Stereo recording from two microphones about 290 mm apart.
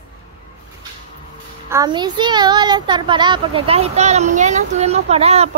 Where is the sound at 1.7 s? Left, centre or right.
Centre.